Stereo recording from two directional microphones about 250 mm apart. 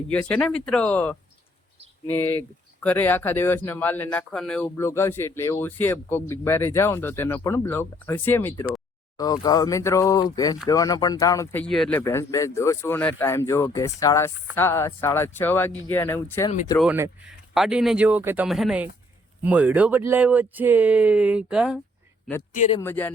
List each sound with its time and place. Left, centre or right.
0.1 s speech: centre
16.7 s speech: centre
22.5 s speech: left
22.8 s speech: centre